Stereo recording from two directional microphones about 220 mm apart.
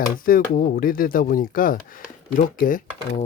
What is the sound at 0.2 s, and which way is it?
Speech, 40° left (ahead or behind).